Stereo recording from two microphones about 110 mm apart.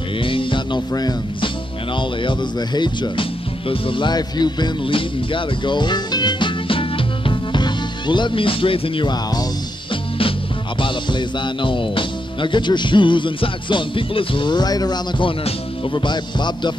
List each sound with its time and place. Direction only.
0.2 s music: 50° left (ahead or behind)
2.0 s speech: 45° left (ahead or behind)
10.8 s music: 45° left (ahead or behind)